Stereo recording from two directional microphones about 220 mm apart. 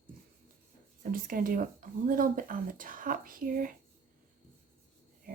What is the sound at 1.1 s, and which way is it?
Speech, 40° right (ahead or behind).